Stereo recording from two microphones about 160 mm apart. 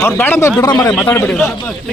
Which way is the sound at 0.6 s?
25° left (ahead or behind).